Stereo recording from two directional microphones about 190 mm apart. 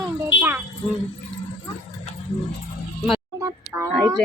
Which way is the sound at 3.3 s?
15° right (ahead or behind).